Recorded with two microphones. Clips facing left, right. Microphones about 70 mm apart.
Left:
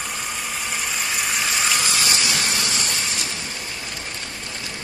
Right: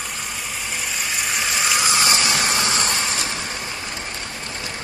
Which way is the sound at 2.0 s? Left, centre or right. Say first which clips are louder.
Right 3 dB; right.